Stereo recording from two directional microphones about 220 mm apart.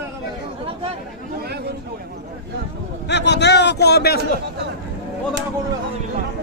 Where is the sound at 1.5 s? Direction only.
45° right (ahead or behind).